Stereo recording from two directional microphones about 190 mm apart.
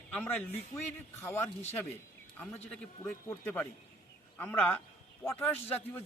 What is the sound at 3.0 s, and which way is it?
Speech, 10° left (ahead or behind).